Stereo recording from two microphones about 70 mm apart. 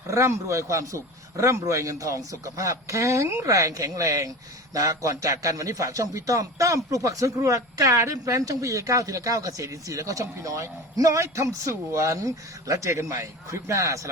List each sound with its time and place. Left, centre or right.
0.1 s a man's voice: right